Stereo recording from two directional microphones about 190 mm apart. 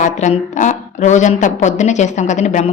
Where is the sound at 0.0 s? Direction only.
40° left (ahead or behind).